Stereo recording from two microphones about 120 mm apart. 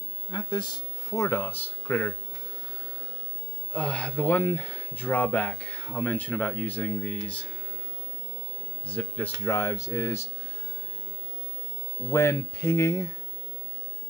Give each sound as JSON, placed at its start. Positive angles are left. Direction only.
{"t": 0.3, "sound": "speech", "side_deg": 40}
{"t": 1.1, "sound": "speech", "side_deg": 20}
{"t": 3.7, "sound": "speech", "side_deg": 10}
{"t": 8.8, "sound": "speech", "side_deg": 15}
{"t": 12.1, "sound": "speech", "side_deg": 20}